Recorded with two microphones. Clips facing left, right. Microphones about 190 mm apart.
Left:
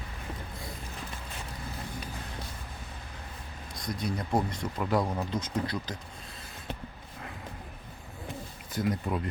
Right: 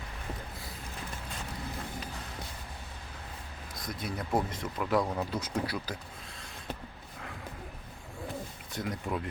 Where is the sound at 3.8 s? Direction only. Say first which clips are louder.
Left 4 dB; 5° right (ahead or behind).